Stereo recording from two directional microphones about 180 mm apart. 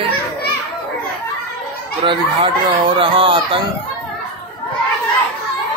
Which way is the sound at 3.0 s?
25° right (ahead or behind).